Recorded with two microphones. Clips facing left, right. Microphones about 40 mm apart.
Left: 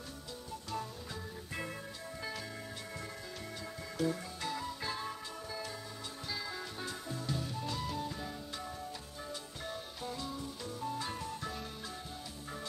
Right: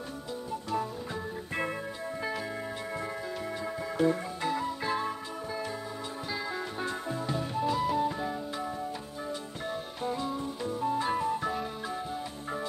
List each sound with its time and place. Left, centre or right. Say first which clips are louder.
3.6 s music: right 8 dB; right
6.3 s music: right 7 dB; right
7.6 s music: right 11 dB; centre
7.9 s music: right 11 dB; right
10.0 s music: right 9 dB; right